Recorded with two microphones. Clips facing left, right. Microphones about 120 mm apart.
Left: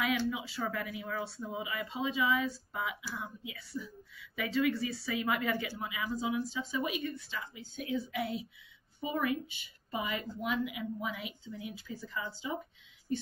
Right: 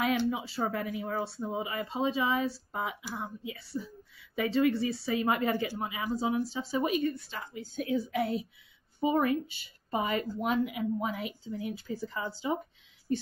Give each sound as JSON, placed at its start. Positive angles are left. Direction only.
{"t": 0.3, "sound": "a woman's voice", "side_deg": -40}